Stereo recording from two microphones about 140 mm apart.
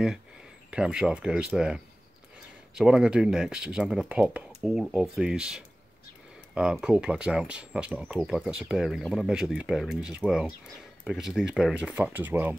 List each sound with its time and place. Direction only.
0.7 s speech: 5° right (ahead or behind)